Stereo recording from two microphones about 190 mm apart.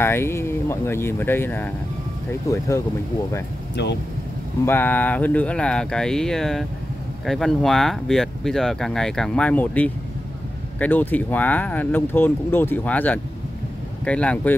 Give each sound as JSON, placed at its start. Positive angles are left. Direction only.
{"t": 0.0, "sound": "speech", "side_deg": 10}
{"t": 3.8, "sound": "speech", "side_deg": 65}
{"t": 4.6, "sound": "speech", "side_deg": 10}